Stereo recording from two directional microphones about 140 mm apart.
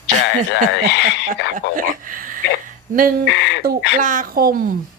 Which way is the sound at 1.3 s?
75° right (ahead or behind).